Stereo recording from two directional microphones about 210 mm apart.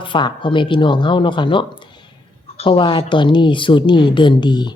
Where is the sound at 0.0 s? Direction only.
20° left (ahead or behind).